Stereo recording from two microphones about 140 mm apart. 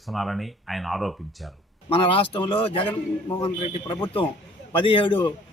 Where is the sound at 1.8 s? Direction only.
40° left (ahead or behind).